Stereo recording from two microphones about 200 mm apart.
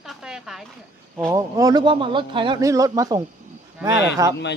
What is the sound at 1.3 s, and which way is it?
A man's voice, 15° right (ahead or behind).